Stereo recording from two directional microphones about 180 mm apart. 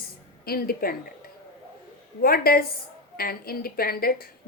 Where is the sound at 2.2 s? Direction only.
55° left (ahead or behind).